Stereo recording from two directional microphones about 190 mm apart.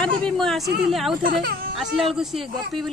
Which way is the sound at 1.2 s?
50° right (ahead or behind).